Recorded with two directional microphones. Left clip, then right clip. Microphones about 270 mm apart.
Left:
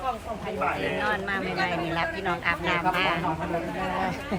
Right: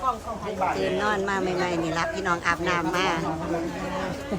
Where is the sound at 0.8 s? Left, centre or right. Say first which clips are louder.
Right 2 dB; centre.